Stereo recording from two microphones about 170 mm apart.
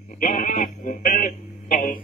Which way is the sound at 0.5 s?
50° left (ahead or behind).